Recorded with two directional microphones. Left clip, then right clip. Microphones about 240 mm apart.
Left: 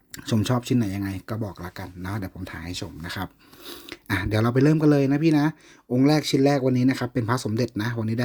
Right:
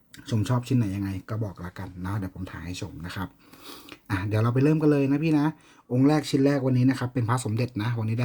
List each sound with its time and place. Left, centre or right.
0.3 s speech: left